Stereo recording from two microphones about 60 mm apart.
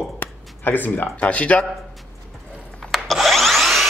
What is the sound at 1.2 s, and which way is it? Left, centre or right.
Speech, left.